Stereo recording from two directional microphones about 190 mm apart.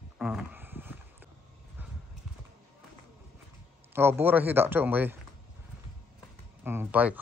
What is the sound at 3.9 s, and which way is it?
Speech, 10° right (ahead or behind).